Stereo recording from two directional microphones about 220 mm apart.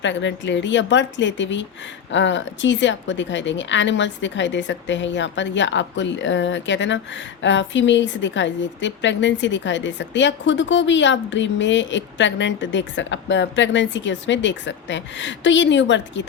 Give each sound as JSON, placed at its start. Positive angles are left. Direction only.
{"t": 0.0, "sound": "a woman's voice", "side_deg": 55}